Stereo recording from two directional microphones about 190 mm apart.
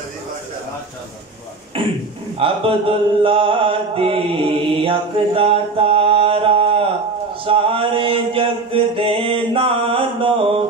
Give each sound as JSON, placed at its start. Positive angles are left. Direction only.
{"t": 1.8, "sound": "speech", "side_deg": -25}
{"t": 2.3, "sound": "mantra", "side_deg": -30}